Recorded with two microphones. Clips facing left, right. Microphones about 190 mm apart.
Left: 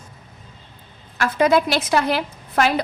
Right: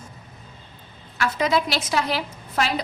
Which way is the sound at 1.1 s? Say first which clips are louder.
Left 5 dB; 50° left (ahead or behind).